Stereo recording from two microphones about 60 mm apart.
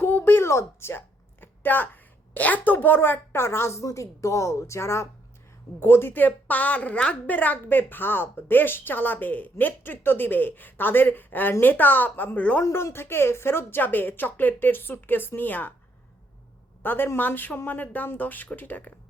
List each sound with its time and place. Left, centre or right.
0.0 s a woman's voice: left
12.6 s a woman's voice: left
16.8 s a woman's voice: left